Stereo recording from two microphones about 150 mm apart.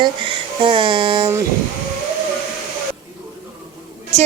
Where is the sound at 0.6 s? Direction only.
35° right (ahead or behind).